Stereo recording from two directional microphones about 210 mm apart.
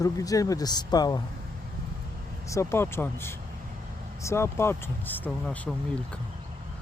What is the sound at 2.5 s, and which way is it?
Speech, 15° left (ahead or behind).